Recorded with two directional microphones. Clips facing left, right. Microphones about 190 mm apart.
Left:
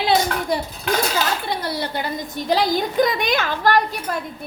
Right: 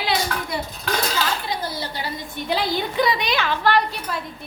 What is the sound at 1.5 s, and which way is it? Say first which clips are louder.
A woman's voice: left 3 dB; 65° left (ahead or behind).